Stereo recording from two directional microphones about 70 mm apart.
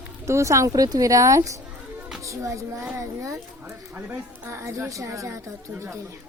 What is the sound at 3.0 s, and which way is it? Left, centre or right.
Speech, right.